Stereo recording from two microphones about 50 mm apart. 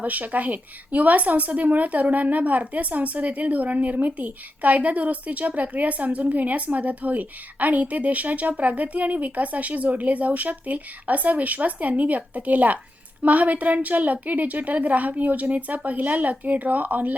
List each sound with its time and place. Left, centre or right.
0.0 s a woman's voice: right